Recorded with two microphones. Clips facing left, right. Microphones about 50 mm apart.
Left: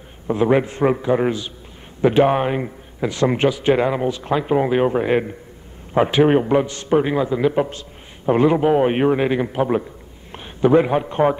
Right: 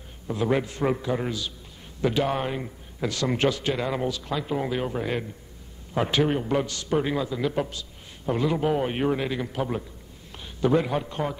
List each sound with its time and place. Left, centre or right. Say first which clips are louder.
0.3 s a man's voice: left 8 dB; left
4.2 s a man's voice: left 9 dB; left
5.9 s a man's voice: left 8 dB; left
6.2 s a man's voice: left 10 dB; left
6.5 s a man's voice: left 8 dB; left